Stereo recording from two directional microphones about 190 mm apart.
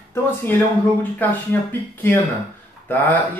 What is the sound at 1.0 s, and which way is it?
Speech, 10° left (ahead or behind).